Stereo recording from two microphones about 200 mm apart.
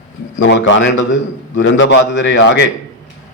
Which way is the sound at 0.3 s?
65° left (ahead or behind).